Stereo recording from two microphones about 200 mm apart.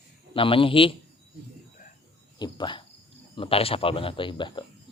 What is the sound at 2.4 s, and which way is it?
A man's voice, 20° left (ahead or behind).